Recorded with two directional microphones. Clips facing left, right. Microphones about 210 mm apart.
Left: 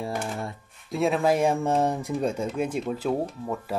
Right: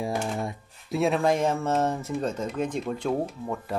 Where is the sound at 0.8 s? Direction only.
Centre (ahead or behind).